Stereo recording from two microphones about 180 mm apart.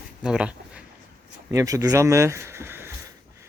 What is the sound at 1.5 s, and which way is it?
Speech, 15° right (ahead or behind).